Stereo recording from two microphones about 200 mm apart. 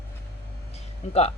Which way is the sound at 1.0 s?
35° left (ahead or behind).